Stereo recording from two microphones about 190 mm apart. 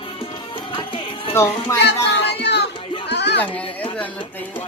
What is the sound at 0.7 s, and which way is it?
Music, 25° left (ahead or behind).